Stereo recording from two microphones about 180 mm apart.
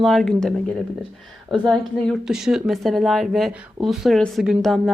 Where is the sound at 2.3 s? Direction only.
5° right (ahead or behind).